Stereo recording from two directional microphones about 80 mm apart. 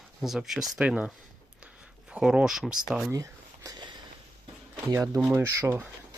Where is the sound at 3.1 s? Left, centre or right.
Right.